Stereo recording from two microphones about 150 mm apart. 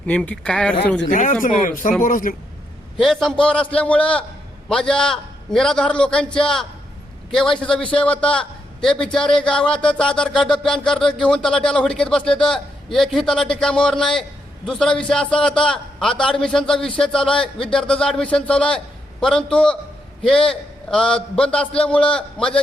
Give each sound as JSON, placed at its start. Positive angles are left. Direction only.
{"t": 0.0, "sound": "a man's voice", "side_deg": 10}
{"t": 1.1, "sound": "speech", "side_deg": 60}
{"t": 3.0, "sound": "a man's voice", "side_deg": 0}